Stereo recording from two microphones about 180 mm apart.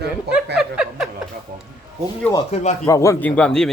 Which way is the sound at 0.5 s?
5° right (ahead or behind).